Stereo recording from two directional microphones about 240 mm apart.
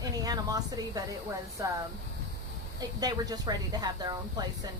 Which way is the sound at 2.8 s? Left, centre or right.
Centre.